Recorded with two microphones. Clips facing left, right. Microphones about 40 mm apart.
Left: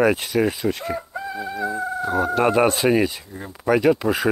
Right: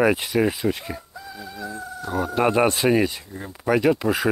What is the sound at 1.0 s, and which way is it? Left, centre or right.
Chicken, left.